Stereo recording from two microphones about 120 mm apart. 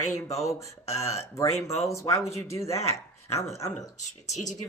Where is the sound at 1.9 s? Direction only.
25° left (ahead or behind).